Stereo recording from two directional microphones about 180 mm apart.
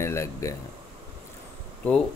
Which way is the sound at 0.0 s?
15° left (ahead or behind).